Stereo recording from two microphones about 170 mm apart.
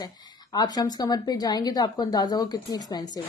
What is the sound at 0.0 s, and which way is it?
A woman's voice, 25° left (ahead or behind).